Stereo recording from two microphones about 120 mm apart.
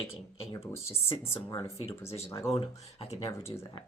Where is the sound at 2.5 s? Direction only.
55° left (ahead or behind).